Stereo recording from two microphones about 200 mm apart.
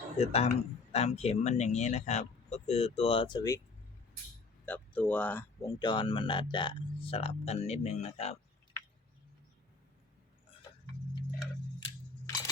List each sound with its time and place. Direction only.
0.2 s speech: 30° left (ahead or behind)
4.6 s speech: 10° left (ahead or behind); by 8.4 s 35° left (ahead or behind)
11.8 s a sound: 20° left (ahead or behind)